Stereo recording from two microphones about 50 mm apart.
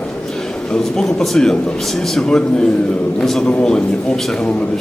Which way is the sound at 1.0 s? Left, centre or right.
Centre.